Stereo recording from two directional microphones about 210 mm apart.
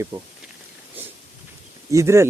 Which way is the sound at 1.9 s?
15° right (ahead or behind).